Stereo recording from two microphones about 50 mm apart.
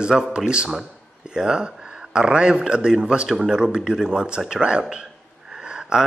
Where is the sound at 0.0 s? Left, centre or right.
Centre.